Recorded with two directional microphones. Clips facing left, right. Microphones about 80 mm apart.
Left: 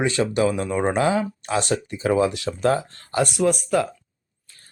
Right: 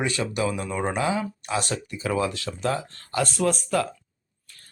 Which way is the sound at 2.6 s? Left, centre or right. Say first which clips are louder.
Left 6 dB; left.